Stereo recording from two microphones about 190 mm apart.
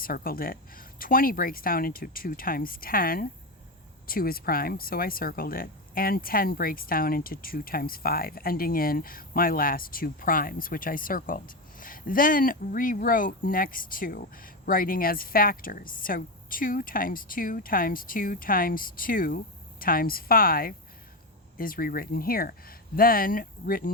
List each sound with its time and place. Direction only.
0.0 s speech: 50° left (ahead or behind)